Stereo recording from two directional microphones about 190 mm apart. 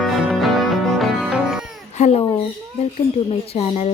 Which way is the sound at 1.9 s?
35° left (ahead or behind).